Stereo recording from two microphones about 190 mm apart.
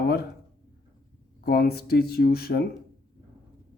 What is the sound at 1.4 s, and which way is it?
Speech, 55° left (ahead or behind).